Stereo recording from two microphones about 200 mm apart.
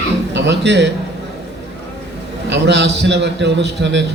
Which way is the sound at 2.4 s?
60° right (ahead or behind).